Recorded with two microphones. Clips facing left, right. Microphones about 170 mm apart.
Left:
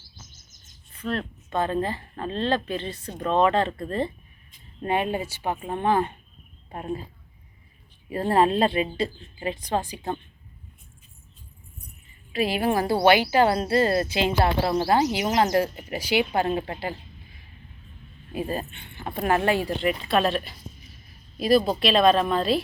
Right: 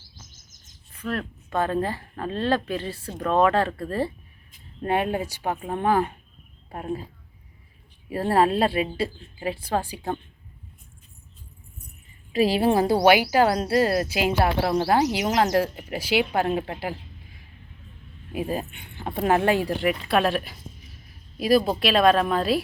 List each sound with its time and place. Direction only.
0.9 s a sound: 5° right (ahead or behind)
1.5 s speech: 15° left (ahead or behind)
1.8 s a woman's voice: 10° right (ahead or behind)
3.7 s speech: 20° left (ahead or behind)
5.4 s a woman's voice: 5° right (ahead or behind)
8.1 s a woman's voice: 5° right (ahead or behind)
12.3 s a woman's voice: 35° right (ahead or behind); by 17.0 s 5° right (ahead or behind)
18.3 s a woman's voice: 10° right (ahead or behind)